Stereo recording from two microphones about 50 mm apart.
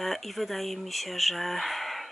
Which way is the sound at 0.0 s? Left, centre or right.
Centre.